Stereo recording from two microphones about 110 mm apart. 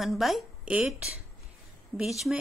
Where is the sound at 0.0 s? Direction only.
Centre (ahead or behind).